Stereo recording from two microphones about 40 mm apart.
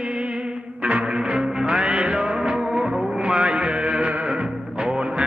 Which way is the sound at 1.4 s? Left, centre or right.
Centre.